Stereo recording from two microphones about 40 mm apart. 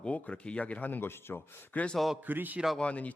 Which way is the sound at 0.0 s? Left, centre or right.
Left.